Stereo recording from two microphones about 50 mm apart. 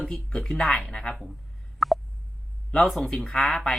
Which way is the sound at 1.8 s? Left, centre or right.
Centre.